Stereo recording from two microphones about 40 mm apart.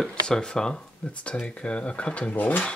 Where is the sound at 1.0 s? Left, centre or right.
Left.